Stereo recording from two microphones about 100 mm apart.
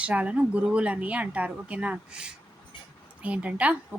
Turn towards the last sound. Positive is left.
turn(degrees=-15)  # may be behind; listen again after turning